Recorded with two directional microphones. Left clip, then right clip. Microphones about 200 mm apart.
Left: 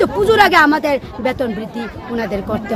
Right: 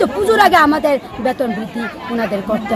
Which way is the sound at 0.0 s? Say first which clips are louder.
Even; 25° left (ahead or behind).